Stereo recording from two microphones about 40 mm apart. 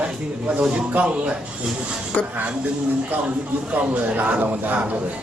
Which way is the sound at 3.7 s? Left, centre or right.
Right.